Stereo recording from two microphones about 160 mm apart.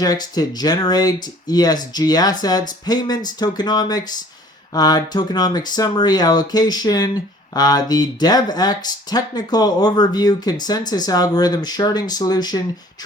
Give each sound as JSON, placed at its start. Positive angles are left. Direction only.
{"t": 0.0, "sound": "speech", "side_deg": 25}